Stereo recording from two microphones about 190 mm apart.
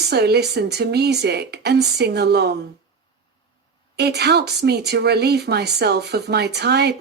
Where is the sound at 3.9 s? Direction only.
60° right (ahead or behind).